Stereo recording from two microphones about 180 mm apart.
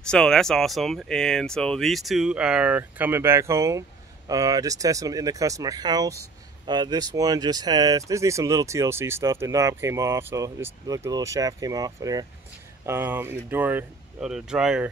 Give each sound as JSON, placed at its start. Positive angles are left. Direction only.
{"t": 0.0, "sound": "speech", "side_deg": 5}